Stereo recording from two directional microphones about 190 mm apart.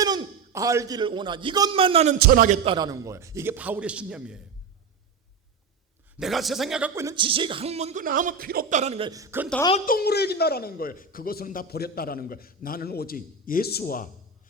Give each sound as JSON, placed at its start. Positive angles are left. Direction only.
{"t": 0.0, "sound": "a man's voice", "side_deg": -20}
{"t": 2.1, "sound": "a man's voice", "side_deg": -50}
{"t": 2.6, "sound": "a man's voice", "side_deg": -20}
{"t": 6.1, "sound": "a man's voice", "side_deg": 0}
{"t": 9.0, "sound": "a man's voice", "side_deg": -15}
{"t": 9.8, "sound": "a man's voice", "side_deg": 50}